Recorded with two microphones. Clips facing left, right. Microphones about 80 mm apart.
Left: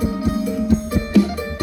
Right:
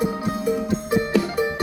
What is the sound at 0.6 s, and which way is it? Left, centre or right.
Music, right.